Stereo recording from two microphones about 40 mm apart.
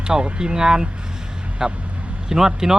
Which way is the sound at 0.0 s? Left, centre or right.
Right.